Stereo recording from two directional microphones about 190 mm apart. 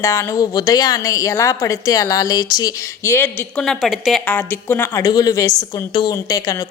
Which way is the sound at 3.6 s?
Centre (ahead or behind).